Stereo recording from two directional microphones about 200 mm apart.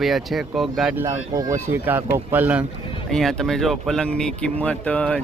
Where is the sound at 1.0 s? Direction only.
15° right (ahead or behind).